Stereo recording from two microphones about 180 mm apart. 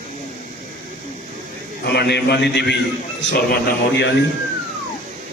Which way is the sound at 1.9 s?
70° left (ahead or behind).